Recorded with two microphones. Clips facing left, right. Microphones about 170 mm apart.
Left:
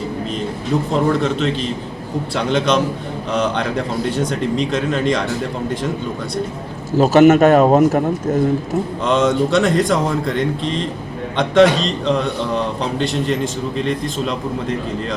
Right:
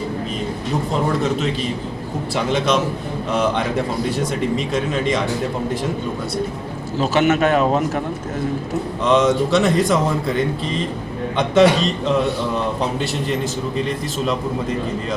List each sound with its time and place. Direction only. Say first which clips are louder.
2.3 s speech: left 1 dB; 5° right (ahead or behind)
7.0 s a man's voice: left 7 dB; 45° left (ahead or behind)
9.0 s speech: right 1 dB; 5° right (ahead or behind)